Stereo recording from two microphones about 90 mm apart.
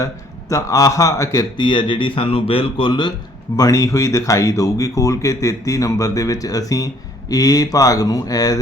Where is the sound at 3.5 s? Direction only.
40° left (ahead or behind).